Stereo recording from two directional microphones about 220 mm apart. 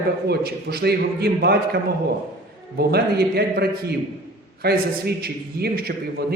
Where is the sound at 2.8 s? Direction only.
45° right (ahead or behind).